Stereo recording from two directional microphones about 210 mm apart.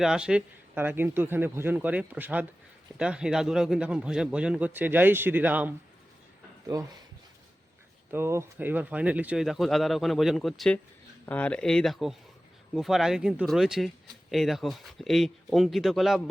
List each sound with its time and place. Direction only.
0.0 s a man's voice: 5° right (ahead or behind)
8.1 s speech: 10° right (ahead or behind)